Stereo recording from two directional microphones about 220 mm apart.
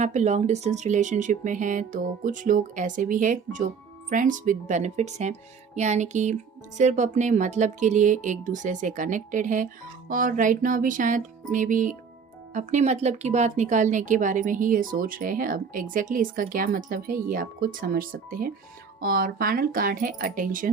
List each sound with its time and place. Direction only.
0.0 s a woman's voice: 30° right (ahead or behind)